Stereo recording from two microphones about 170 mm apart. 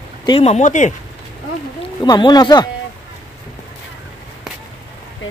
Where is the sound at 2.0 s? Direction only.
25° left (ahead or behind).